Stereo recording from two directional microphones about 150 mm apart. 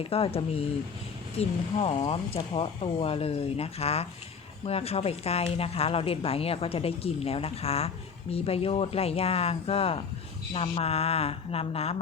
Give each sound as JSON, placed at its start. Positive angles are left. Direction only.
{"t": 0.0, "sound": "speech", "side_deg": 40}